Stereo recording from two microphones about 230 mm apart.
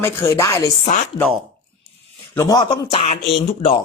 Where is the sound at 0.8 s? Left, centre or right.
Left.